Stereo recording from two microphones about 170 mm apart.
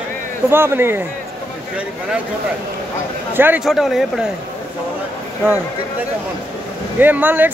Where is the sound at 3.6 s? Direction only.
Centre (ahead or behind).